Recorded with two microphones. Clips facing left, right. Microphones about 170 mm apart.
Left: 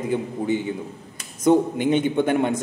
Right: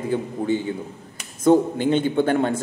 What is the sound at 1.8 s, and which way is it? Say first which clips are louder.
Speech: even; 15° left (ahead or behind).